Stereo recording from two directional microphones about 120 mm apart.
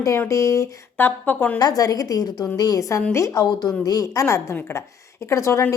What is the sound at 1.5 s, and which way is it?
A woman's voice, 30° left (ahead or behind).